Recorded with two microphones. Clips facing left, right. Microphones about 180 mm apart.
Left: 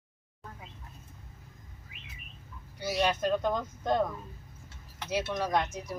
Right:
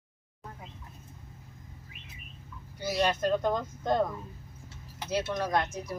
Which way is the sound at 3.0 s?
Centre (ahead or behind).